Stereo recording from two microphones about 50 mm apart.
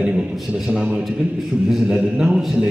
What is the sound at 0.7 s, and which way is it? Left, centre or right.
A man's voice, right.